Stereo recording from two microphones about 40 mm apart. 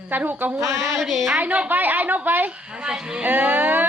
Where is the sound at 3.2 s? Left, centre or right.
Right.